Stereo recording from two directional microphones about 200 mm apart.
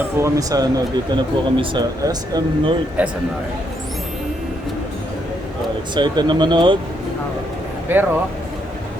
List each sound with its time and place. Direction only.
0.2 s speech: 15° right (ahead or behind)
3.0 s speech: 5° right (ahead or behind)
5.9 s speech: 20° right (ahead or behind)
7.9 s speech: 10° right (ahead or behind)